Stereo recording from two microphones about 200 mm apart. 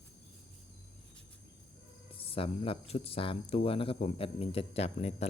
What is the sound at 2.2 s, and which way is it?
Speech, 30° left (ahead or behind).